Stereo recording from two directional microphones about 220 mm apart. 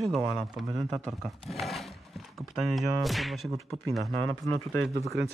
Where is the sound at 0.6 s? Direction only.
Centre (ahead or behind).